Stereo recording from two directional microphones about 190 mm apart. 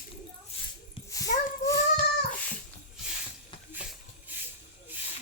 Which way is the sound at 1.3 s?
40° left (ahead or behind).